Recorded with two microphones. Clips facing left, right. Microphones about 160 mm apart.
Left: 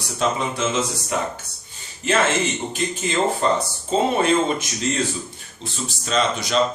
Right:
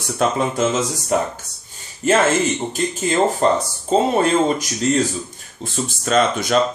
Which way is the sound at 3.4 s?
40° right (ahead or behind).